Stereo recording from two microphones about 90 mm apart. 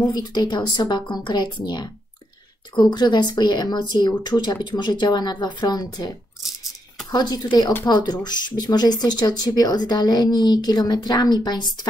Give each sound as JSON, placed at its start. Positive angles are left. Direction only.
{"t": 0.1, "sound": "a woman's voice", "side_deg": 50}